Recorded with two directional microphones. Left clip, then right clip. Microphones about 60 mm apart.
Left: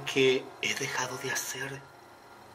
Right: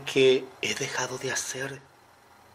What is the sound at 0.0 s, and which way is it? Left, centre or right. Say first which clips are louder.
Speech: right 4 dB; right.